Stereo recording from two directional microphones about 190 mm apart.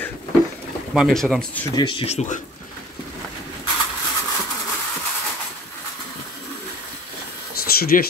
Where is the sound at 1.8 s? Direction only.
25° left (ahead or behind).